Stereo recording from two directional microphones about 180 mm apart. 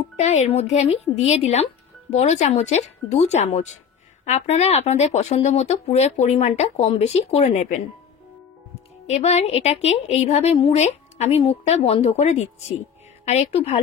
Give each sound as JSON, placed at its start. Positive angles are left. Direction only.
{"t": 0.2, "sound": "a woman's voice", "side_deg": 40}
{"t": 9.0, "sound": "a woman's voice", "side_deg": 35}